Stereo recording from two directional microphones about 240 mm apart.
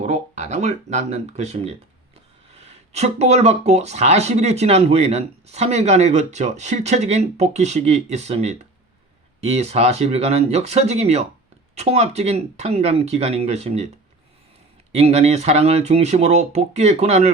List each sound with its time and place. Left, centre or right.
0.0 s speech: right
14.9 s speech: right